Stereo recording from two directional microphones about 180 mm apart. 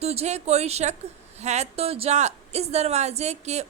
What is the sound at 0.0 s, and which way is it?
Speech, 35° right (ahead or behind).